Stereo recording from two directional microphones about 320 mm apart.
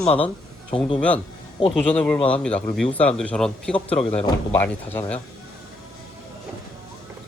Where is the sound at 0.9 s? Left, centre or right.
Centre.